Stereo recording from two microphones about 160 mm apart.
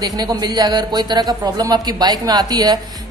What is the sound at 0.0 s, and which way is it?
A man's voice, 25° right (ahead or behind).